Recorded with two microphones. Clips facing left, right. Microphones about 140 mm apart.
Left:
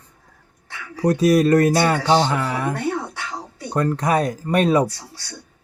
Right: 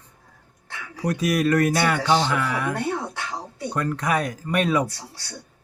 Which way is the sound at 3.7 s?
35° left (ahead or behind).